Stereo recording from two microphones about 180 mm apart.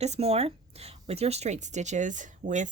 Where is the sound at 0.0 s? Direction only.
35° right (ahead or behind).